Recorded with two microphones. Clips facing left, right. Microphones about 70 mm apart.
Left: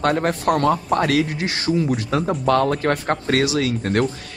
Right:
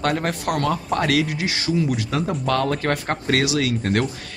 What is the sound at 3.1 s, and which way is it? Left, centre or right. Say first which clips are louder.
Speech: left 1 dB; left.